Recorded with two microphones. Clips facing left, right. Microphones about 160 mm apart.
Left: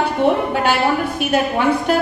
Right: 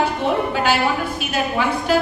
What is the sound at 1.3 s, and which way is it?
Speech, 55° left (ahead or behind).